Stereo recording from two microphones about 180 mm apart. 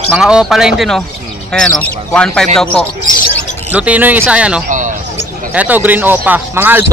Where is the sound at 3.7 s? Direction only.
10° right (ahead or behind).